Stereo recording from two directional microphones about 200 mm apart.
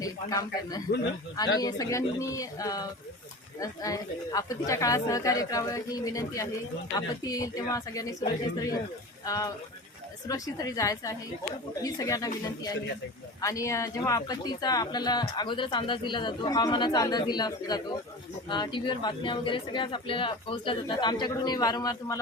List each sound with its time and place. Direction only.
0.0 s a man's voice: 15° left (ahead or behind)